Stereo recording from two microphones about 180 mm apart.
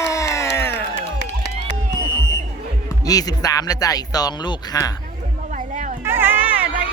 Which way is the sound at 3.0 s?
20° left (ahead or behind).